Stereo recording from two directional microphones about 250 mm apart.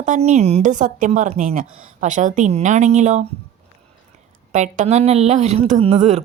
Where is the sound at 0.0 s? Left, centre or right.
Right.